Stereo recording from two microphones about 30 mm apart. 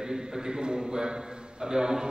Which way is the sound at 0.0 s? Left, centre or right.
Centre.